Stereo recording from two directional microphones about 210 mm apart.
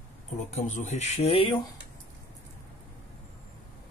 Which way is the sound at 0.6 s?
35° left (ahead or behind).